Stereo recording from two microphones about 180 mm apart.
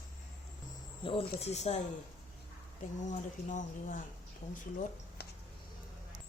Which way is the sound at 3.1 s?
45° left (ahead or behind).